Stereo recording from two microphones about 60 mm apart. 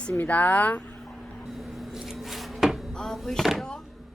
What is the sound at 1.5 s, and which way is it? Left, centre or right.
Cupboard open or close, centre.